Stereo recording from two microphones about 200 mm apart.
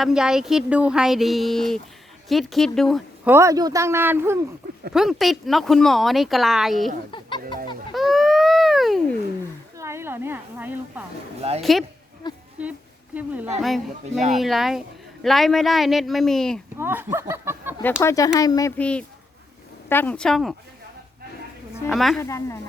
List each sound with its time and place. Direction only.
0.0 s speech: 5° right (ahead or behind)
3.2 s speech: 15° right (ahead or behind)
4.9 s speech: centre (ahead or behind)
7.1 s music: 25° left (ahead or behind)
7.9 s a sound: centre (ahead or behind)
9.7 s a woman's voice: 15° right (ahead or behind)
12.2 s a sound: 20° left (ahead or behind)
13.1 s speech: 10° right (ahead or behind)
16.7 s speech: 10° right (ahead or behind)
18.0 s a woman's voice: 15° left (ahead or behind)
18.8 s speech: 5° left (ahead or behind)
21.8 s speech: centre (ahead or behind)
22.2 s a woman's voice: 15° left (ahead or behind)